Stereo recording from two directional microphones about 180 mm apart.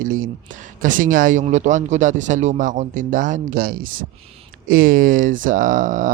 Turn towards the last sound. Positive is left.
turn(degrees=-45)  # may be behind; listen again after turning